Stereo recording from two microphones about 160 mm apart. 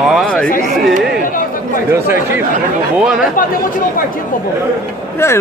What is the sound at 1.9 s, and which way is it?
Speech, 15° right (ahead or behind).